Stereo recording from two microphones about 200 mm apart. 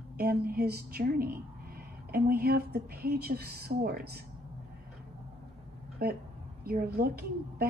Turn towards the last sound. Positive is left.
turn(degrees=-50)  # may be behind; listen again after turning